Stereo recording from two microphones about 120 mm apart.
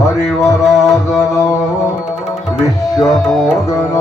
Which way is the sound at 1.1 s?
25° left (ahead or behind).